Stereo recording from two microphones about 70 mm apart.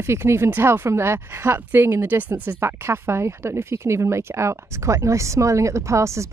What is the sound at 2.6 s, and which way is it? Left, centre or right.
Speech, right.